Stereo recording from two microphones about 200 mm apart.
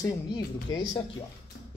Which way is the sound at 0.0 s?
20° left (ahead or behind).